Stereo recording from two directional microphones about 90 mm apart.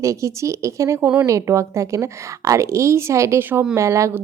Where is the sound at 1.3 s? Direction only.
35° right (ahead or behind).